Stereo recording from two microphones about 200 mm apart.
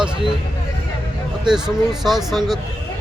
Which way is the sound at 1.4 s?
5° right (ahead or behind).